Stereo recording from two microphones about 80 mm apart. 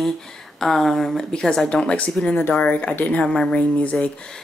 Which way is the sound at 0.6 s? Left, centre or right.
Centre.